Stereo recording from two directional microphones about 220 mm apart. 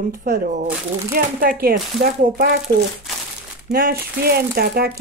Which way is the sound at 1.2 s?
40° right (ahead or behind).